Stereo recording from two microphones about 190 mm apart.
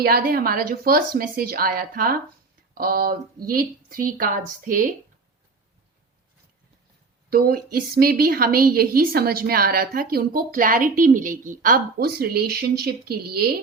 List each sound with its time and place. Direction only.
0.0 s a woman's voice: 50° right (ahead or behind)
7.3 s a woman's voice: 50° right (ahead or behind)